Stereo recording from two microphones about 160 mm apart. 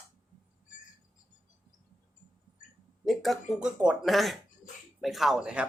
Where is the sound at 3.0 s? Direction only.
Centre (ahead or behind).